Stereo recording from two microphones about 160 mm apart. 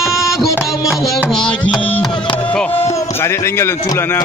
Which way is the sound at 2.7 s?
35° left (ahead or behind).